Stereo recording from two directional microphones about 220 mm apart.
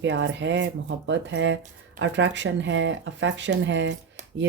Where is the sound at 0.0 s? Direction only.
55° right (ahead or behind).